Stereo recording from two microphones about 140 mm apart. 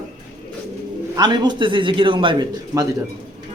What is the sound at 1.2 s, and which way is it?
A man's voice, 30° right (ahead or behind).